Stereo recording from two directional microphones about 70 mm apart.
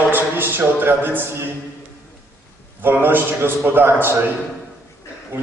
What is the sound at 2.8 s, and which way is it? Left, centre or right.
A man's voice, right.